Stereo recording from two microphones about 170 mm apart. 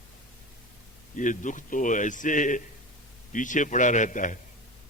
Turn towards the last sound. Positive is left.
turn(degrees=50)  # may be behind; listen again after turning